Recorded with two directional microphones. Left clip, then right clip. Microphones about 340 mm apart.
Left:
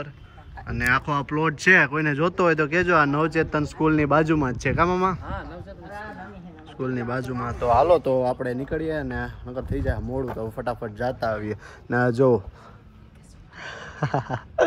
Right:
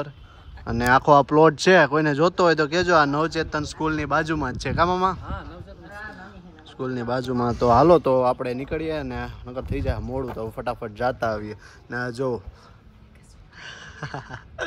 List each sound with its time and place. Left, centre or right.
0.7 s speech: centre
11.1 s speech: centre
11.4 s speech: centre
13.6 s a sound: centre